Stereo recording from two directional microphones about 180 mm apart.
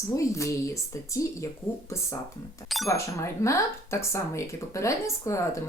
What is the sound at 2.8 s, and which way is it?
Speech, 15° left (ahead or behind).